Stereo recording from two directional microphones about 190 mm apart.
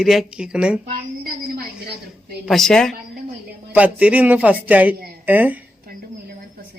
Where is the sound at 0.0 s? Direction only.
Centre (ahead or behind).